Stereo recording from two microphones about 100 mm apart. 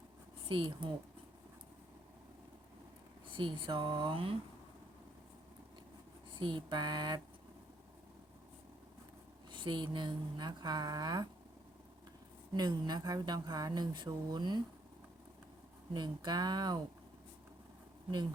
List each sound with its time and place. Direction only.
0.4 s speech: 55° right (ahead or behind)
3.3 s speech: 55° right (ahead or behind)
6.4 s speech: 50° right (ahead or behind)
9.5 s speech: 50° right (ahead or behind)
12.5 s speech: 45° right (ahead or behind)
15.9 s speech: 45° right (ahead or behind)